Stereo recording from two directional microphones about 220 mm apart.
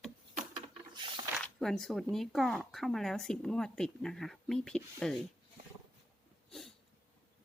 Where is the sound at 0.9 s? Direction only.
20° right (ahead or behind).